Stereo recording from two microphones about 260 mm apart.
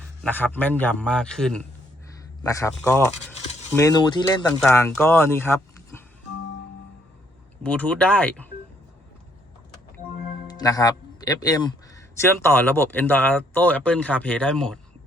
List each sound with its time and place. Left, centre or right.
0.2 s a man's voice: centre
7.6 s a man's voice: centre
10.4 s a man's voice: centre